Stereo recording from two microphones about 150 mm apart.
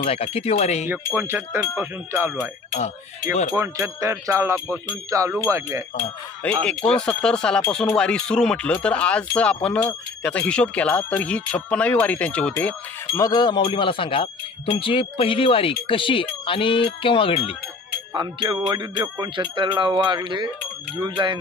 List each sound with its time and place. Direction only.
0.0 s speech: 40° left (ahead or behind)
0.8 s speech: 15° right (ahead or behind)
3.5 s music: 20° right (ahead or behind)
6.4 s speech: 10° left (ahead or behind)
13.1 s speech: 25° left (ahead or behind)
18.1 s music: 25° right (ahead or behind)